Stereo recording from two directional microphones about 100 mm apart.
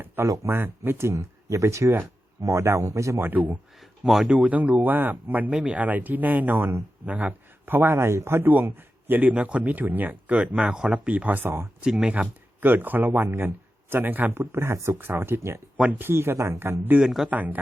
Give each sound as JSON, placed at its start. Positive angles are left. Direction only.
{"t": 0.3, "sound": "speech", "side_deg": -25}
{"t": 3.8, "sound": "speech", "side_deg": 0}
{"t": 11.8, "sound": "speech", "side_deg": -10}
{"t": 17.0, "sound": "speech", "side_deg": 0}
{"t": 17.2, "sound": "speech", "side_deg": -15}